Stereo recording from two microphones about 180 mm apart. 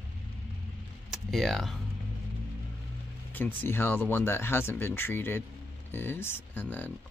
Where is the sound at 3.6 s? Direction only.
10° left (ahead or behind).